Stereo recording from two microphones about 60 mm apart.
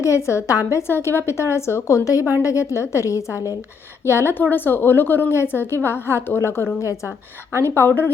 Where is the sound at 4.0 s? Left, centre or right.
Left.